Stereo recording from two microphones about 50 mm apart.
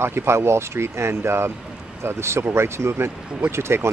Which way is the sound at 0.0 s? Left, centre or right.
Right.